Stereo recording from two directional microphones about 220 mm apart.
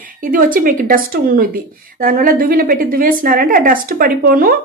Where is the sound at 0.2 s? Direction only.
40° right (ahead or behind).